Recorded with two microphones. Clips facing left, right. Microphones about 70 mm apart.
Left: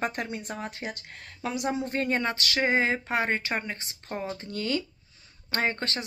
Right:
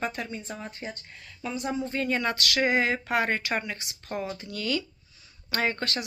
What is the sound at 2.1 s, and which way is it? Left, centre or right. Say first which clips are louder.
Speech: even; left.